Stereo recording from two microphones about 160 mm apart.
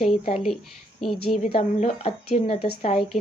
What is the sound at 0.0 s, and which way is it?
Speech, 45° left (ahead or behind).